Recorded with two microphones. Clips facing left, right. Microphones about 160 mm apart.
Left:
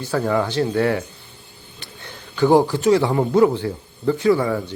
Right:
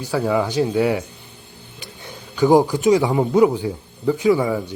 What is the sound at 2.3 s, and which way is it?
A man's voice, 15° right (ahead or behind).